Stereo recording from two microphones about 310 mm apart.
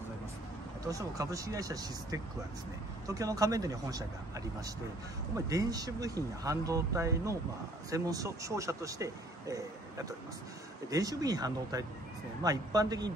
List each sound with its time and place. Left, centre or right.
0.8 s speech: centre
5.5 s speech: centre